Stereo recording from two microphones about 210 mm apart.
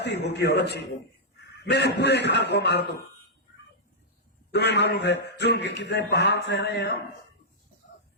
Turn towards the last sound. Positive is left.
turn(degrees=50)  # may be behind; listen again after turning